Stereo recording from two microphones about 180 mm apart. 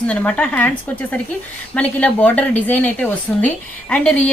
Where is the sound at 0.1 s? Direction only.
5° left (ahead or behind).